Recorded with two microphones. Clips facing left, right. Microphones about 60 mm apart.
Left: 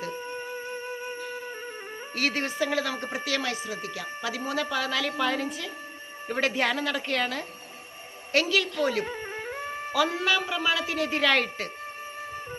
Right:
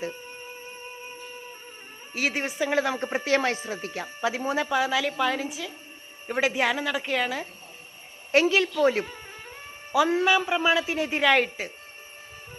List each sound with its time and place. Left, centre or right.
1.2 s music: left
2.1 s a woman's voice: centre
2.6 s a man's voice: right
8.3 s a man's voice: right
9.0 s music: left
9.9 s a man's voice: right